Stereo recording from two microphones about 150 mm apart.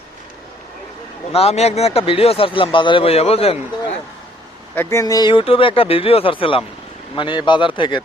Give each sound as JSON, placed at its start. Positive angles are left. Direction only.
{"t": 1.3, "sound": "speech", "side_deg": 40}
{"t": 4.7, "sound": "speech", "side_deg": 15}